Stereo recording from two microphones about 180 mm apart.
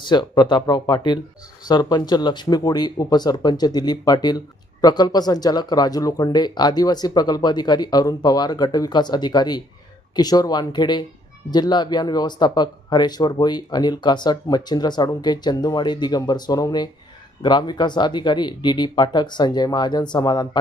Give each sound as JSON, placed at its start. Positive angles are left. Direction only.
{"t": 0.0, "sound": "speech", "side_deg": 25}